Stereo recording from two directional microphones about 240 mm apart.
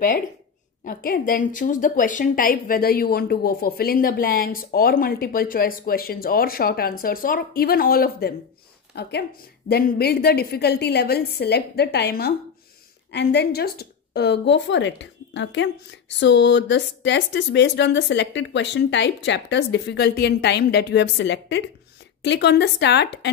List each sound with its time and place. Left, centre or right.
0.8 s a woman's voice: left